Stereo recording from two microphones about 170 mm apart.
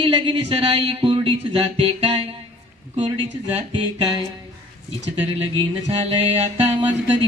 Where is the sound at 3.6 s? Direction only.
30° right (ahead or behind).